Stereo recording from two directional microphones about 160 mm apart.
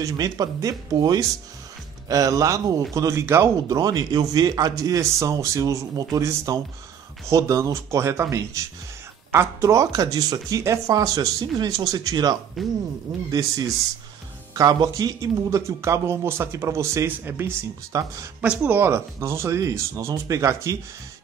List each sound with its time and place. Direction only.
0.0 s a man's voice: 20° right (ahead or behind)
12.6 s speech: centre (ahead or behind)
13.3 s a man's voice: 25° right (ahead or behind)